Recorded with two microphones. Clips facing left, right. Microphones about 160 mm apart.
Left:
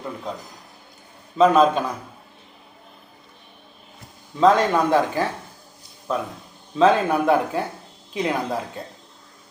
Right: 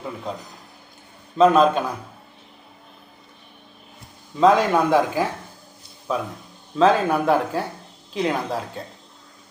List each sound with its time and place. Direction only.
1.4 s speech: centre (ahead or behind)
4.4 s speech: 5° right (ahead or behind)